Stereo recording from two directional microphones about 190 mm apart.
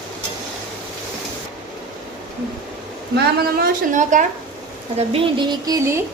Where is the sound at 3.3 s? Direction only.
55° right (ahead or behind).